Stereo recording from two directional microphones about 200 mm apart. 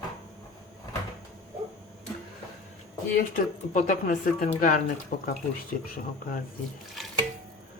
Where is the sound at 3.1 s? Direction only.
40° left (ahead or behind).